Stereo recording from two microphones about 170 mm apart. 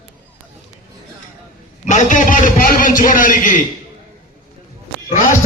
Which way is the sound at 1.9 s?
45° left (ahead or behind).